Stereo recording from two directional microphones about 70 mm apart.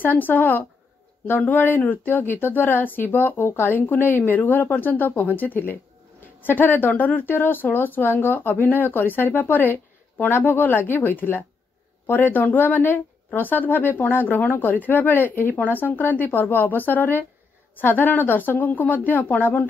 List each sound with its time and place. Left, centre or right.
0.0 s speech: left